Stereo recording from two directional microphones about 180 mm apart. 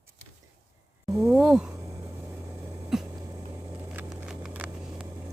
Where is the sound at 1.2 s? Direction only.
Centre (ahead or behind).